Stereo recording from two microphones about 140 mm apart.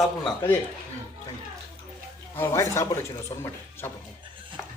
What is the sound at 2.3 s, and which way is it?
Speech, 15° left (ahead or behind).